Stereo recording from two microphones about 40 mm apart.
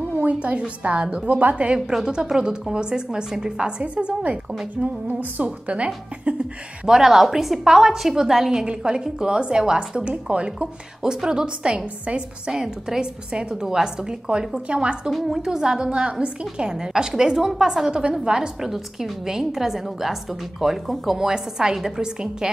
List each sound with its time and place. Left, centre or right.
0.2 s a woman's voice: right
3.8 s a woman's voice: right
6.9 s a woman's voice: centre; by 10.7 s right
11.0 s a woman's voice: centre
13.3 s a woman's voice: right
15.0 s speech: centre
15.4 s a woman's voice: centre
18.6 s a woman's voice: centre
21.2 s a woman's voice: centre